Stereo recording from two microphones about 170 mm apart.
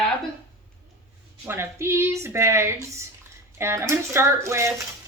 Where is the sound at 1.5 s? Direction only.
15° right (ahead or behind).